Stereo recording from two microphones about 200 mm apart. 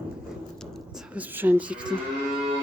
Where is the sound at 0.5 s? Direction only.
Centre (ahead or behind).